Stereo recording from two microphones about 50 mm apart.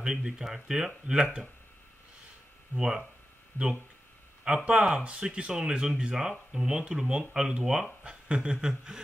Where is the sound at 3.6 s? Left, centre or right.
Left.